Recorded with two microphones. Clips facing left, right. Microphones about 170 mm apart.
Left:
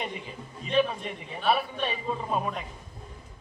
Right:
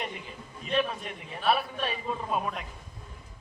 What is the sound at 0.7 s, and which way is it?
A man's voice, centre (ahead or behind).